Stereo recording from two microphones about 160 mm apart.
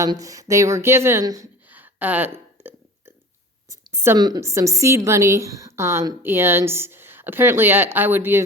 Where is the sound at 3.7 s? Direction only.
15° right (ahead or behind).